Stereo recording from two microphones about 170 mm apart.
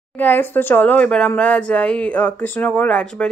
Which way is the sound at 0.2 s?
10° left (ahead or behind).